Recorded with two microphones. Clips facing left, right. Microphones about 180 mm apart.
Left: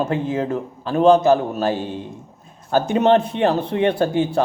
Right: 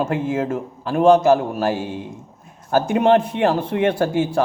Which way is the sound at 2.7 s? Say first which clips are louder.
Even; 25° left (ahead or behind).